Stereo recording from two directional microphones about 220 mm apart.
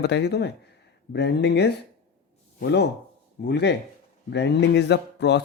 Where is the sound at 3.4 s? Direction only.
50° left (ahead or behind).